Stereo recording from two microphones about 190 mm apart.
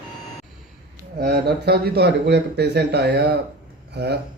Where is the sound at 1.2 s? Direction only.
60° right (ahead or behind).